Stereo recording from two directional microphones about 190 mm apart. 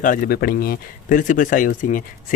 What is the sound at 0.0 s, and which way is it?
Speech, 45° left (ahead or behind).